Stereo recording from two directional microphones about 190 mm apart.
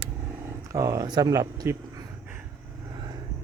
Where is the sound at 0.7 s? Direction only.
20° right (ahead or behind).